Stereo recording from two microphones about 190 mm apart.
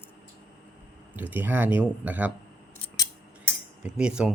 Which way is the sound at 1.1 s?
10° right (ahead or behind).